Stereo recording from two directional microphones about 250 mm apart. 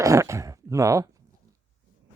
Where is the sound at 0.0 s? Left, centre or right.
Centre.